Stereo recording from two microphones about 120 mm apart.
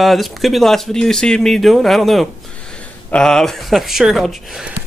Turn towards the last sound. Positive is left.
turn(degrees=-5)  # may be behind; listen again after turning